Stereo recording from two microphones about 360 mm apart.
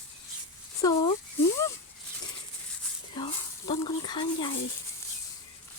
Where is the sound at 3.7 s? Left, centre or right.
Centre.